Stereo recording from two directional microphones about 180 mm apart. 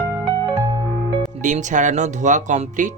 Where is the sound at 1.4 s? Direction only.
45° right (ahead or behind).